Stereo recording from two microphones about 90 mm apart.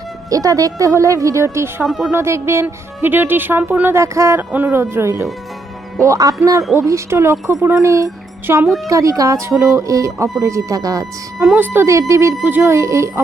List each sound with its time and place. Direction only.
0.3 s speech: 40° right (ahead or behind)
1.8 s speech: 5° right (ahead or behind)
2.1 s speech: 30° right (ahead or behind)
4.4 s speech: 20° right (ahead or behind)
8.6 s speech: centre (ahead or behind)
8.9 s speech: 40° right (ahead or behind)
11.5 s speech: 25° right (ahead or behind)